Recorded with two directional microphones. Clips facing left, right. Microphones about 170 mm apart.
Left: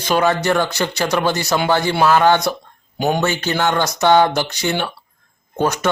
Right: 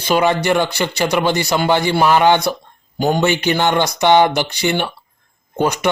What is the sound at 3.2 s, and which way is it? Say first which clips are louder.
Speech: right 3 dB; 15° right (ahead or behind).